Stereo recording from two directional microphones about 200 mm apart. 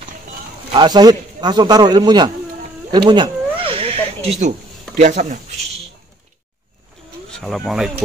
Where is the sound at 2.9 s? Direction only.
20° right (ahead or behind).